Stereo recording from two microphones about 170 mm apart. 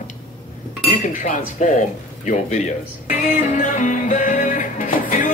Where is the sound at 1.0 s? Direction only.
50° left (ahead or behind).